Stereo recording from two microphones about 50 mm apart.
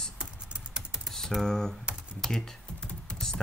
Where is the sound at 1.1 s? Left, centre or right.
Centre.